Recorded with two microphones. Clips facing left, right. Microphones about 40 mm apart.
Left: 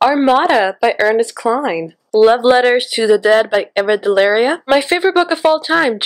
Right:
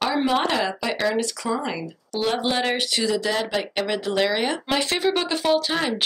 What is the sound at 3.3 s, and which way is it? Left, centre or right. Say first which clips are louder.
Speech: left 11 dB; left.